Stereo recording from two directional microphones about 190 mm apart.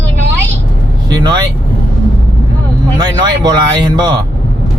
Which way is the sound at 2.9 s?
20° right (ahead or behind).